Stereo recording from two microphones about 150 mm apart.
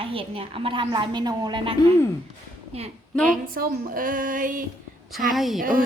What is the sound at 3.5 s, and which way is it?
Speech, 70° right (ahead or behind).